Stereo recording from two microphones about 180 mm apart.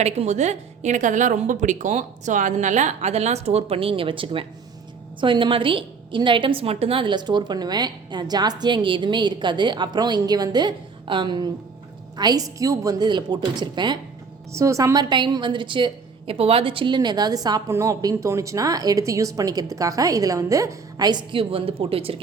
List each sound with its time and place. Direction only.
0.0 s a woman's voice: 40° right (ahead or behind)